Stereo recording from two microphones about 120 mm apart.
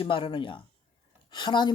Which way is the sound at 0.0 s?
45° left (ahead or behind).